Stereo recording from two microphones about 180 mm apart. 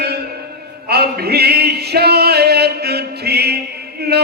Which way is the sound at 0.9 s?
60° right (ahead or behind).